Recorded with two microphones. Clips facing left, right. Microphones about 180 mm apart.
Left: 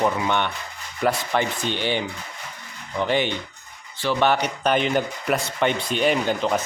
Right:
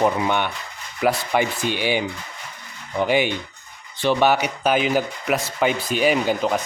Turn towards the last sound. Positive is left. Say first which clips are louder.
# right 2 dB
turn(degrees=-5)  # may be behind; listen again after turning